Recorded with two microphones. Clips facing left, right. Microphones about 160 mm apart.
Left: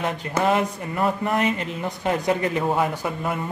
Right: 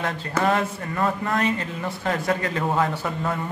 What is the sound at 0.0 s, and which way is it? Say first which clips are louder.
Speech: left 1 dB; 15° left (ahead or behind).